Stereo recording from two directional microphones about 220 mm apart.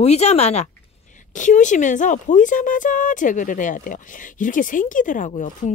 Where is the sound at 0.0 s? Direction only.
30° left (ahead or behind).